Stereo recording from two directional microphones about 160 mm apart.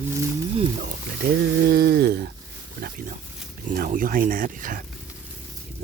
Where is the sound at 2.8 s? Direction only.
60° right (ahead or behind).